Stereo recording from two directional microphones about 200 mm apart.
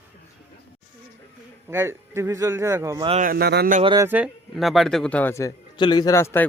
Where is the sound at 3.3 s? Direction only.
55° right (ahead or behind).